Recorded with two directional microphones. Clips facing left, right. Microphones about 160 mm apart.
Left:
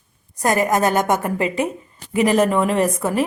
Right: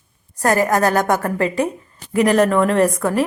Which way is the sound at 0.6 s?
20° left (ahead or behind).